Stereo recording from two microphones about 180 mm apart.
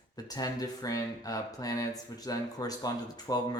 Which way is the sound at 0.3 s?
20° left (ahead or behind).